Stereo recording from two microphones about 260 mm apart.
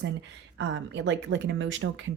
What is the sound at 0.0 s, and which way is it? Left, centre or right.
Speech, right.